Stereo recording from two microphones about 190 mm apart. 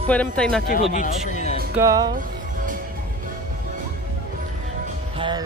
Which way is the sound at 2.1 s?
45° right (ahead or behind).